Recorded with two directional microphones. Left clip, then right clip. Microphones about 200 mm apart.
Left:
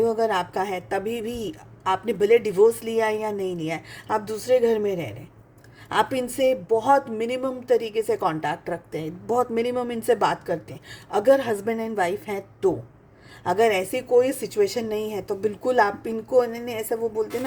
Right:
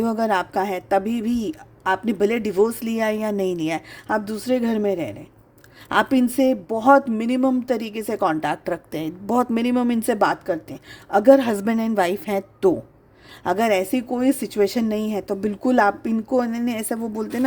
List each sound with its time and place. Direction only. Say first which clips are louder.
0.0 s a woman's voice: even; 45° right (ahead or behind)